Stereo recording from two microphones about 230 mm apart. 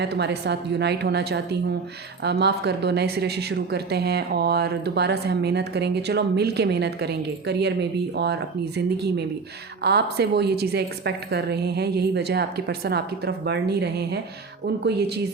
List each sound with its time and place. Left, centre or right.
0.0 s a woman's voice: right